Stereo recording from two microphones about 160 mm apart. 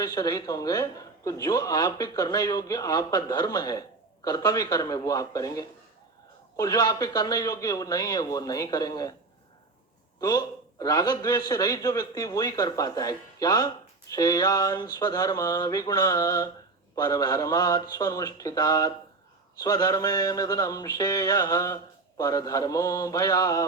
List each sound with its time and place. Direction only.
0.0 s speech: 20° left (ahead or behind)
10.2 s speech: 20° left (ahead or behind)